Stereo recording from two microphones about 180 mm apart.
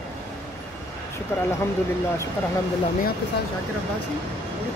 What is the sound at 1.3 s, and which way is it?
Speech, 15° left (ahead or behind).